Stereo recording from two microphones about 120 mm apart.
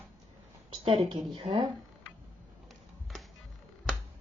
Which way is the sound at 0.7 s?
45° right (ahead or behind).